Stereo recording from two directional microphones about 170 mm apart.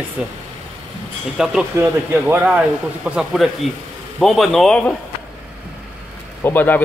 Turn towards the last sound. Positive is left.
turn(degrees=10)  # may be behind; listen again after turning